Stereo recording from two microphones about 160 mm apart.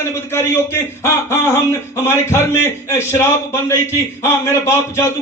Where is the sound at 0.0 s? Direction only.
15° left (ahead or behind).